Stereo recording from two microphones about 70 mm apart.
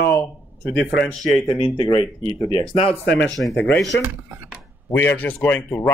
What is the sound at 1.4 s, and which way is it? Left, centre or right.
Speech, left.